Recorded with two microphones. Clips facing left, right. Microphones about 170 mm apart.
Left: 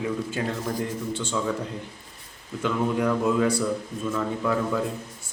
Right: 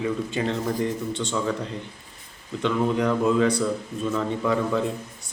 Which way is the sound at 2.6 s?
5° left (ahead or behind).